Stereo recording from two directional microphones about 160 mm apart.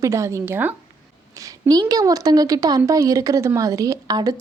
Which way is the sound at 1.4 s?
20° right (ahead or behind).